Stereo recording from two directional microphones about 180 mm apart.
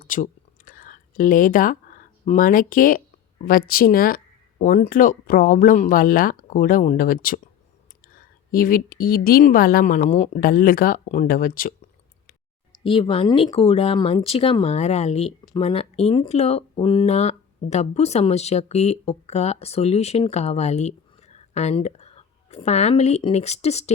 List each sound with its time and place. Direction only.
0.0 s a sound: 50° left (ahead or behind)
3.4 s a woman's voice: 55° left (ahead or behind)
12.8 s speech: 30° left (ahead or behind)